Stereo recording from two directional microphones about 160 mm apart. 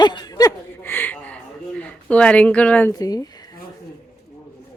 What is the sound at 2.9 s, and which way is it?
Speech, 25° left (ahead or behind).